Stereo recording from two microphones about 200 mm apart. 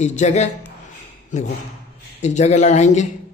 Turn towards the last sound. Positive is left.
turn(degrees=35)  # may be behind; listen again after turning